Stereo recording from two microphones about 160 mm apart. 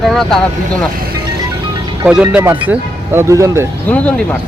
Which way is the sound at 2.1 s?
5° right (ahead or behind).